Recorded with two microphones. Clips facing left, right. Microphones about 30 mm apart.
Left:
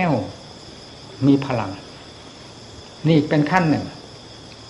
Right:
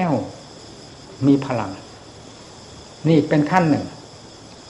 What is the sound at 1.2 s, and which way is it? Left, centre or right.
Speech, centre.